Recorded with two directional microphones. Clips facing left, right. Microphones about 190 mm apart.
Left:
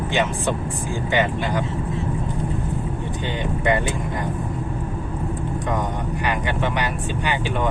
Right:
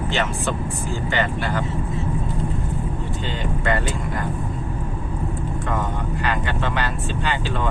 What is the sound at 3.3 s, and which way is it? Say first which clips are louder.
Speech: left 3 dB; 15° left (ahead or behind).